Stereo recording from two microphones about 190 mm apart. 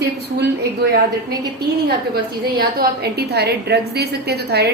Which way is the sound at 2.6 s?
55° right (ahead or behind).